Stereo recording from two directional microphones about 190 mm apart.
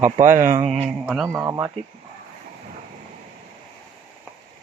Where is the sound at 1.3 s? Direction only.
15° right (ahead or behind).